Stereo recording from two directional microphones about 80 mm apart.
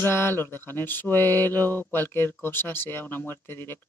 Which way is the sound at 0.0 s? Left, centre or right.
Left.